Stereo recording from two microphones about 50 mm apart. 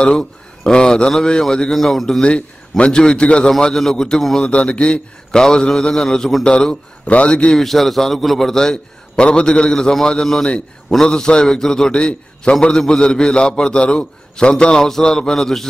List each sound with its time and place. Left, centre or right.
0.0 s a man's voice: centre
3.6 s a man's voice: centre
4.5 s a man's voice: left
7.5 s a man's voice: centre